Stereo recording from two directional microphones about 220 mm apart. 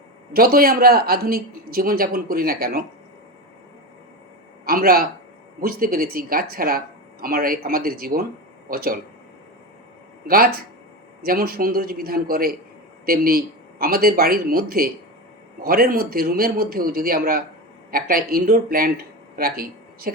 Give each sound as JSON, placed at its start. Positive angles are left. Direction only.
{"t": 0.3, "sound": "speech", "side_deg": -40}
{"t": 4.6, "sound": "speech", "side_deg": -40}
{"t": 10.2, "sound": "speech", "side_deg": -40}